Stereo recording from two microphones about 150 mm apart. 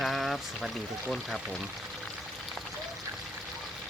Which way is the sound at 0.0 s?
Centre (ahead or behind).